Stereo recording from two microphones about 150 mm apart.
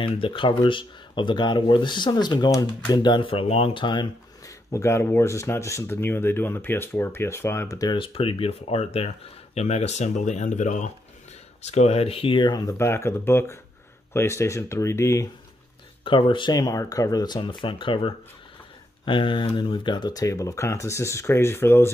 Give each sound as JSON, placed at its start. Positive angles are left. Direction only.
{"t": 0.0, "sound": "speech", "side_deg": 35}
{"t": 16.0, "sound": "speech", "side_deg": 35}